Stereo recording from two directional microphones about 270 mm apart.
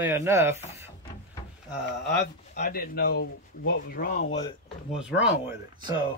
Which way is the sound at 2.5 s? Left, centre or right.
Left.